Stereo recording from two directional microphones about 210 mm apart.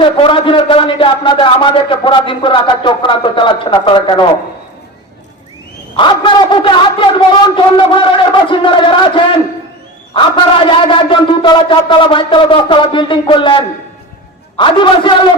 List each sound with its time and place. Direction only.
0.0 s speech: 25° left (ahead or behind)
6.0 s speech: 20° left (ahead or behind)